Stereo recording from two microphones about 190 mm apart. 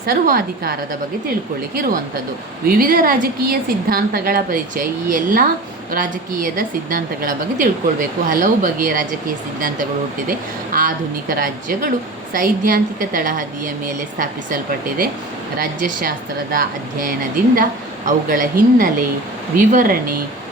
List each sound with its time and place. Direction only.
0.0 s a woman's voice: 50° right (ahead or behind)
2.6 s a woman's voice: 50° right (ahead or behind)
10.2 s a woman's voice: 50° right (ahead or behind)